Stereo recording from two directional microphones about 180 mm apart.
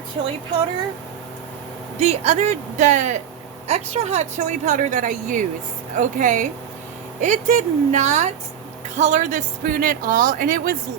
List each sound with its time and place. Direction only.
2.0 s speech: 40° right (ahead or behind)